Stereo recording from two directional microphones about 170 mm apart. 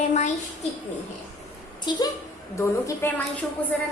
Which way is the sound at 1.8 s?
25° left (ahead or behind).